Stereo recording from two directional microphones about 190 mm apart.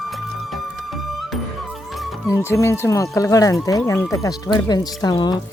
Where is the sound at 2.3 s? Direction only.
15° left (ahead or behind).